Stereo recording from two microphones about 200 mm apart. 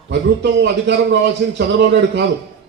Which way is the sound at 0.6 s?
60° right (ahead or behind).